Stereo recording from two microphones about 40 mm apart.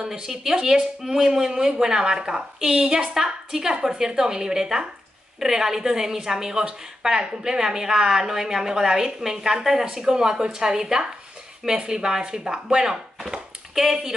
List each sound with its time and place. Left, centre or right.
0.0 s a woman's voice: centre